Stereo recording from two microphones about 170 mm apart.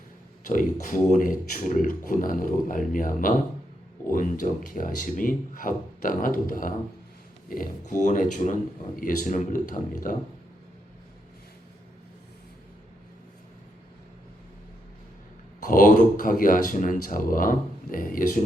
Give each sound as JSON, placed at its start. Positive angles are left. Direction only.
{"t": 0.4, "sound": "speech", "side_deg": 50}
{"t": 15.6, "sound": "speech", "side_deg": 55}